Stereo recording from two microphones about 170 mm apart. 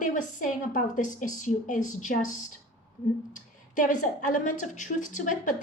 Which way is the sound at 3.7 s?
50° left (ahead or behind).